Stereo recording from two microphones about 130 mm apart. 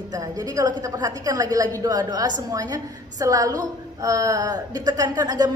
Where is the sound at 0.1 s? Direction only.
30° right (ahead or behind).